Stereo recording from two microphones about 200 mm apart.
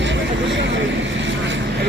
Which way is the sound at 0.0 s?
65° right (ahead or behind).